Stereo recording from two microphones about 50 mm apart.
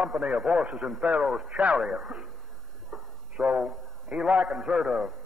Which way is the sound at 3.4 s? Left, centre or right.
Right.